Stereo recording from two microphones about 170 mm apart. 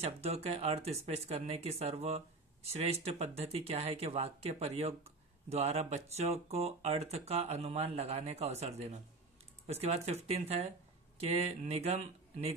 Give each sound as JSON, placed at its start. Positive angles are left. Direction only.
{"t": 0.0, "sound": "speech", "side_deg": -40}